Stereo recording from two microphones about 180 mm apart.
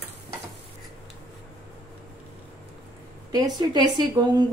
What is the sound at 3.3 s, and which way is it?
Speech, 20° right (ahead or behind).